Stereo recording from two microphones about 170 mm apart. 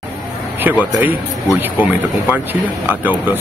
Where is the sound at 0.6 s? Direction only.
10° right (ahead or behind).